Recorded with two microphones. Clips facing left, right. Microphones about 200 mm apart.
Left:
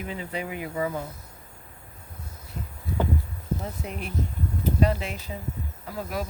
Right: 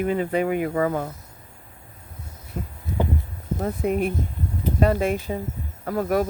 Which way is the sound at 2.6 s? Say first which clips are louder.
Right 6 dB; 50° right (ahead or behind).